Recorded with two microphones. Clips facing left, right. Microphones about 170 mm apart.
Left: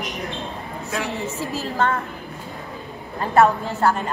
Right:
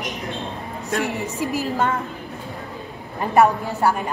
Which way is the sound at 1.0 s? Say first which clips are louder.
Right 2 dB; 15° right (ahead or behind).